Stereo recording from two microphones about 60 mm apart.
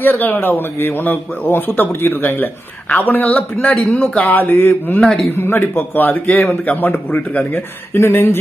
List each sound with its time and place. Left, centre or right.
0.0 s a man's voice: left